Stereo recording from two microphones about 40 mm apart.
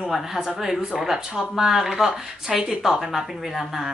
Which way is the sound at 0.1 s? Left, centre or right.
Centre.